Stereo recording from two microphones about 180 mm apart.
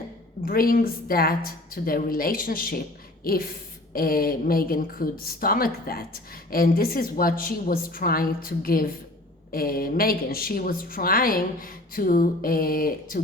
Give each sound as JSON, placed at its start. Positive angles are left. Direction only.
{"t": 0.4, "sound": "speech", "side_deg": 55}